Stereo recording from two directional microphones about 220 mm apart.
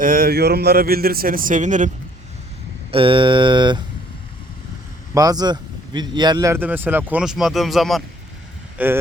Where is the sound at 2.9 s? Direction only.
25° right (ahead or behind).